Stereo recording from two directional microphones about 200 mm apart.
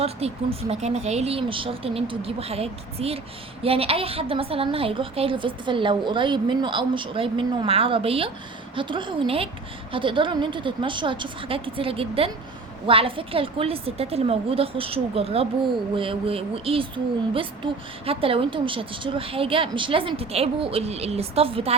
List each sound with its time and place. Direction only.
0.2 s a woman's voice: 30° right (ahead or behind)